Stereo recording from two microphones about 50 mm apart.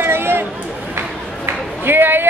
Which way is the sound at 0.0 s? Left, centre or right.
Right.